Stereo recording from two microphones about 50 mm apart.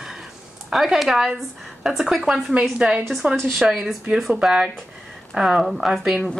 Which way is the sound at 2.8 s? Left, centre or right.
Right.